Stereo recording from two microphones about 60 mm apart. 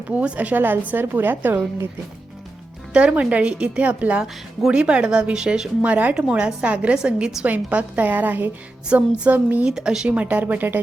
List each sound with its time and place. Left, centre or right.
0.1 s a woman's voice: right
2.9 s speech: right
7.4 s speech: right
9.6 s speech: centre
10.1 s speech: right